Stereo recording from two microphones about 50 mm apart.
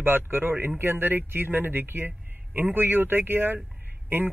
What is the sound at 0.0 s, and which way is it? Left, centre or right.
Speech, right.